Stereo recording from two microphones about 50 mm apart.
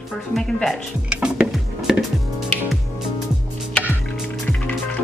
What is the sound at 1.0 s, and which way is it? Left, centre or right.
Music, right.